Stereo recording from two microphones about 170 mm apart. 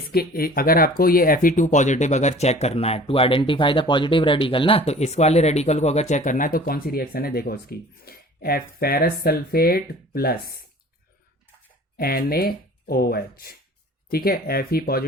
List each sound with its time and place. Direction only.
0.1 s speech: 65° left (ahead or behind)
11.9 s speech: 65° left (ahead or behind)